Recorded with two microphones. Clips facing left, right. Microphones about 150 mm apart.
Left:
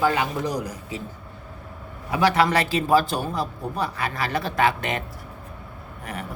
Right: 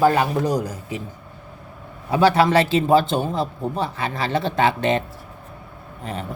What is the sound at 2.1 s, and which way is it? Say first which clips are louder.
A man's voice: right 4 dB; 30° right (ahead or behind).